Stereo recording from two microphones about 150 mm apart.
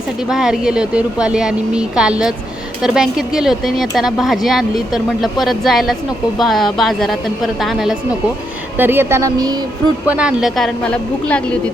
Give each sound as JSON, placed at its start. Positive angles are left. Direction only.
{"t": 0.3, "sound": "speech", "side_deg": -5}
{"t": 8.8, "sound": "speech", "side_deg": -15}
{"t": 10.1, "sound": "speech", "side_deg": -5}